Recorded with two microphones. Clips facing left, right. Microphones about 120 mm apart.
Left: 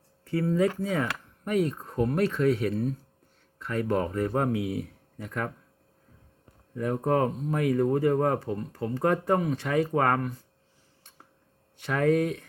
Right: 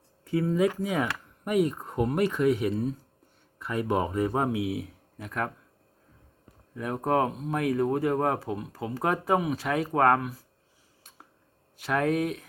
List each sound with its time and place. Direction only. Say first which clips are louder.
0.3 s speech: even; 15° right (ahead or behind)
6.7 s speech: left 1 dB; 5° right (ahead or behind)
11.9 s speech: left 2 dB; 5° right (ahead or behind)